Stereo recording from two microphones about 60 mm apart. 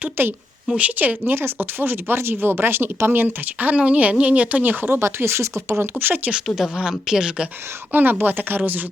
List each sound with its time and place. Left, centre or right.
0.0 s a woman's voice: right
0.8 s speech: right
6.0 s speech: right
6.6 s speech: centre
8.2 s speech: right